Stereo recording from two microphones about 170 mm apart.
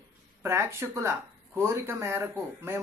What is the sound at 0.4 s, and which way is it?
Speech, 15° right (ahead or behind).